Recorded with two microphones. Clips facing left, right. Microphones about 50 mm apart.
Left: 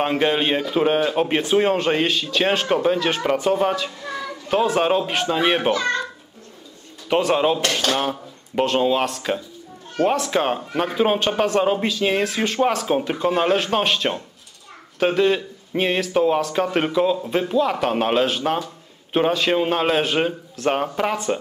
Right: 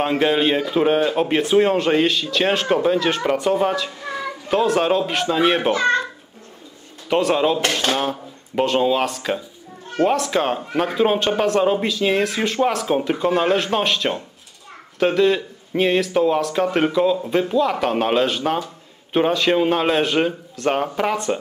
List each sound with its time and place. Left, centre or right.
0.0 s speech: centre
4.0 s a sound: centre
4.6 s speech: centre
5.7 s a child's voice: right
7.1 s speech: centre